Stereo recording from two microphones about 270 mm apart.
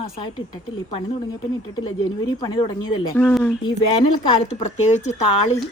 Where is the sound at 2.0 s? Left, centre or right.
Centre.